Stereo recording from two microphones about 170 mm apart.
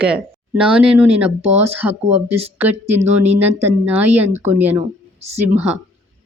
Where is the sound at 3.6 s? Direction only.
10° right (ahead or behind).